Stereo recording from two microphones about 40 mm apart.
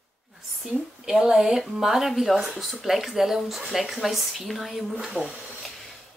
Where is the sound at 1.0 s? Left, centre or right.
Centre.